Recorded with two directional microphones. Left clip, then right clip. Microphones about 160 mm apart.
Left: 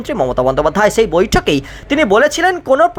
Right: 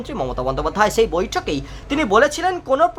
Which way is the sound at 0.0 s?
25° left (ahead or behind).